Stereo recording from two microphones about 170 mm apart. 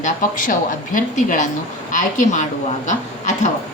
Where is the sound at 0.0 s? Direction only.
50° left (ahead or behind).